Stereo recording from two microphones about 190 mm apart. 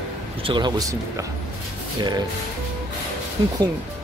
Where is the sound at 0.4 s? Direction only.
25° right (ahead or behind).